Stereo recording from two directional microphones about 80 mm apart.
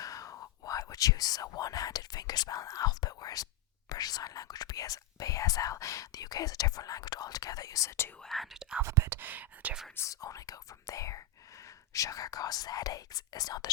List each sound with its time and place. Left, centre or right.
0.0 s whispering: left
3.8 s speech: left
8.2 s speech: centre
8.8 s speech: right
9.1 s speech: right
9.9 s speech: left